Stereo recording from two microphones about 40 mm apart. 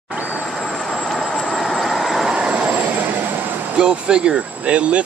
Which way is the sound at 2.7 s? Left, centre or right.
Right.